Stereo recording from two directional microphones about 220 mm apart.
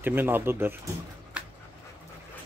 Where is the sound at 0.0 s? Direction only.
10° right (ahead or behind).